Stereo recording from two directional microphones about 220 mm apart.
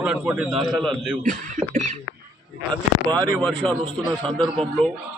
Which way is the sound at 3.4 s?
Centre (ahead or behind).